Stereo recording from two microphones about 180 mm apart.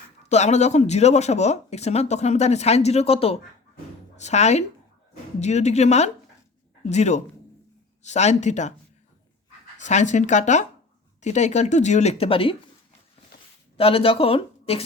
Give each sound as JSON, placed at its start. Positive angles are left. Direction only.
{"t": 0.2, "sound": "speech", "side_deg": 40}
{"t": 9.7, "sound": "speech", "side_deg": 40}
{"t": 13.7, "sound": "speech", "side_deg": 30}